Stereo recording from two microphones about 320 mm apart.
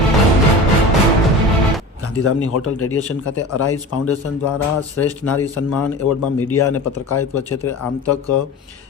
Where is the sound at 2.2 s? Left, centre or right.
Left.